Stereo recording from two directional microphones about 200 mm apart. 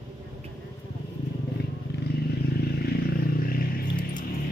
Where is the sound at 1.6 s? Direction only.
55° left (ahead or behind).